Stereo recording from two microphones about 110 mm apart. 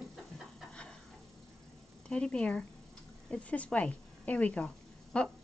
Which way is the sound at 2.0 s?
10° left (ahead or behind).